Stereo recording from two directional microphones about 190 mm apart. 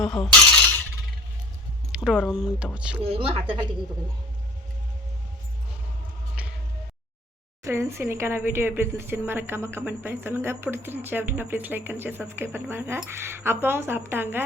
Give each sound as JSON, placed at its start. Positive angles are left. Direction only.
{"t": 0.0, "sound": "speech", "side_deg": 5}
{"t": 1.9, "sound": "speech", "side_deg": -5}
{"t": 3.0, "sound": "a woman's voice", "side_deg": -30}
{"t": 6.4, "sound": "music", "side_deg": -5}
{"t": 7.6, "sound": "speech", "side_deg": -15}